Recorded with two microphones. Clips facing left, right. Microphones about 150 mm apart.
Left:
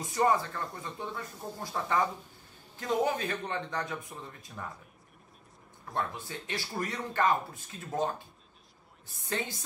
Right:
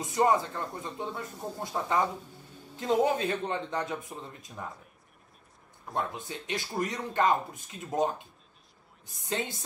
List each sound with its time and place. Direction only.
0.0 s speech: 20° right (ahead or behind)
5.9 s speech: 20° right (ahead or behind)